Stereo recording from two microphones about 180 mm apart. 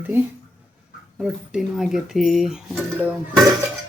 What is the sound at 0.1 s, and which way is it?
Speech, 10° right (ahead or behind).